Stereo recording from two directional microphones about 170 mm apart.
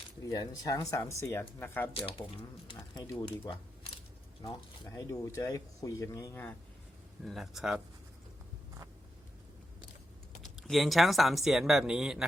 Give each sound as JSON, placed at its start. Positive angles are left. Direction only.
{"t": 0.3, "sound": "speech", "side_deg": 20}
{"t": 2.0, "sound": "speech", "side_deg": 35}
{"t": 7.3, "sound": "speech", "side_deg": 0}
{"t": 10.4, "sound": "speech", "side_deg": 0}